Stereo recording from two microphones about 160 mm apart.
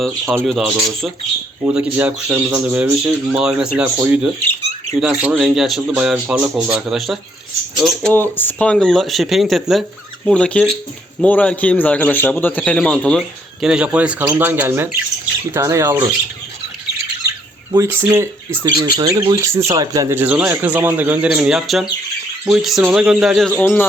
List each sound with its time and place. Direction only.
0.4 s a man's voice: centre (ahead or behind)
17.7 s a man's voice: 15° right (ahead or behind)
23.6 s speech: 10° left (ahead or behind)